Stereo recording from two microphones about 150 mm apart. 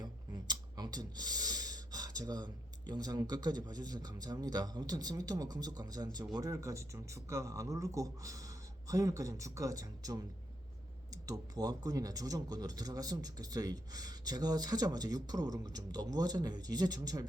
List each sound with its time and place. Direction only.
0.0 s speech: 25° right (ahead or behind)